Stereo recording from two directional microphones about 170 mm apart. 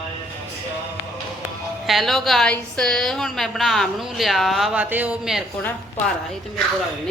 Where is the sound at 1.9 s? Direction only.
Centre (ahead or behind).